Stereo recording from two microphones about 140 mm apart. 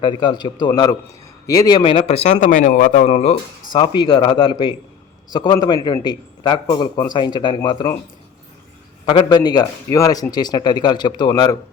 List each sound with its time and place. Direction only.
0.0 s a man's voice: 35° left (ahead or behind)
1.8 s speech: 40° left (ahead or behind)
3.7 s a man's voice: 35° left (ahead or behind)
9.0 s speech: 35° left (ahead or behind)